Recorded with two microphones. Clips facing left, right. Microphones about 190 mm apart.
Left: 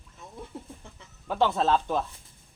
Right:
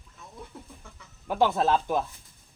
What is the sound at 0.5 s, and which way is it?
Speech, 25° left (ahead or behind).